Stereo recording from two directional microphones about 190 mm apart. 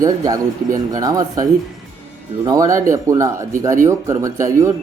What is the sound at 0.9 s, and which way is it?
A man's voice, 20° right (ahead or behind).